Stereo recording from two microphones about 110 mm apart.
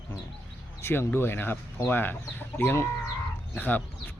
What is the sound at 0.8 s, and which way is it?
Speech, 20° left (ahead or behind).